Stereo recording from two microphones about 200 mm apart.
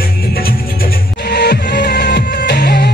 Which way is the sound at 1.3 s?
55° left (ahead or behind).